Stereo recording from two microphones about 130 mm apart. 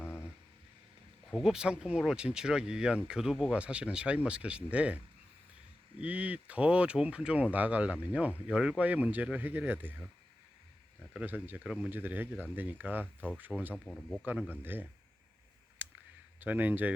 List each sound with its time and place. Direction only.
0.0 s vehicle: 15° left (ahead or behind)
1.3 s speech: 5° right (ahead or behind)
6.0 s speech: 10° right (ahead or behind)
11.0 s speech: 5° right (ahead or behind)
13.7 s speech: 5° left (ahead or behind)
14.2 s speech: 10° right (ahead or behind)
15.8 s clicking: 15° right (ahead or behind)
16.4 s speech: 15° right (ahead or behind)